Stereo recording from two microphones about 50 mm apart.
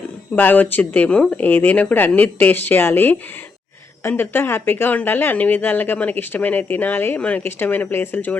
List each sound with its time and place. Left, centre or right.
0.3 s speech: left
4.2 s speech: left
7.2 s a woman's voice: left
7.4 s speech: left